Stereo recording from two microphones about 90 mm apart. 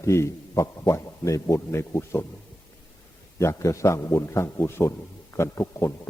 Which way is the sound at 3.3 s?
35° left (ahead or behind).